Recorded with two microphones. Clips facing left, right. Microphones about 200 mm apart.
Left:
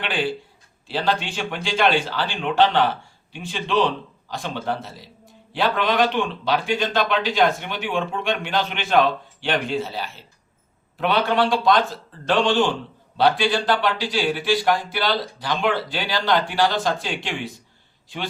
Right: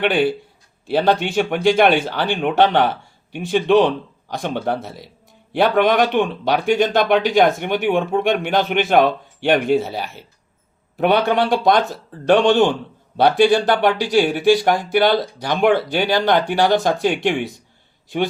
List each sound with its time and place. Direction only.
0.0 s speech: 60° right (ahead or behind)